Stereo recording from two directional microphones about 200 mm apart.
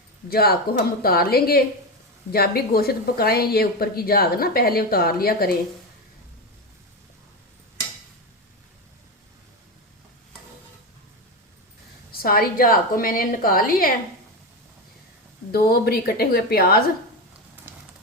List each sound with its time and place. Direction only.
0.3 s speech: 50° left (ahead or behind)
12.1 s speech: 45° left (ahead or behind)
15.5 s speech: 50° left (ahead or behind)